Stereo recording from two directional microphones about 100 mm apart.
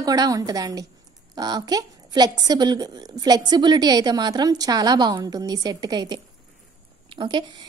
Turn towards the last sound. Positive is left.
turn(degrees=-50)  # may be behind; listen again after turning